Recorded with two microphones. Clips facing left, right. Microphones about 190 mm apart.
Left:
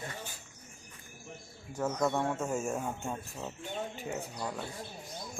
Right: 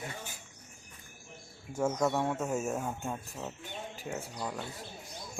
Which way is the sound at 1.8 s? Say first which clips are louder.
Right 1 dB; 10° right (ahead or behind).